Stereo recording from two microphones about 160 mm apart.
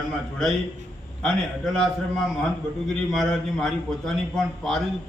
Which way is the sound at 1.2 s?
Centre (ahead or behind).